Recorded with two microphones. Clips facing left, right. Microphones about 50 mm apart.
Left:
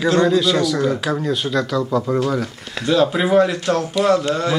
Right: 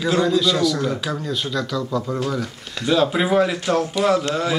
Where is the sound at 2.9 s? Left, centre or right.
Centre.